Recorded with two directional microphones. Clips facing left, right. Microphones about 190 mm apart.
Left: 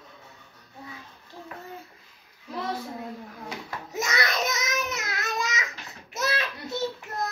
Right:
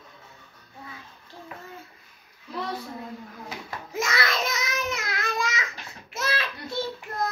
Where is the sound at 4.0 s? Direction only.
20° left (ahead or behind).